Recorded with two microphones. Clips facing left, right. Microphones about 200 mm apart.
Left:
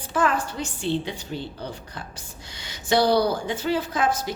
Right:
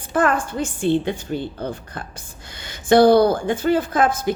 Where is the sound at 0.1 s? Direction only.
50° right (ahead or behind).